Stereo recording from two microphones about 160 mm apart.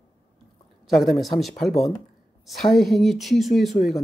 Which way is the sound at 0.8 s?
Centre (ahead or behind).